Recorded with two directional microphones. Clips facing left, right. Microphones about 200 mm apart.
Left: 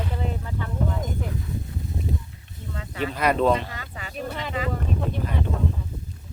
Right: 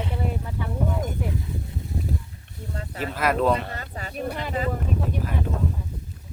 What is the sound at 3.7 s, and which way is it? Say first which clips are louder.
Speech: right 3 dB; 40° right (ahead or behind).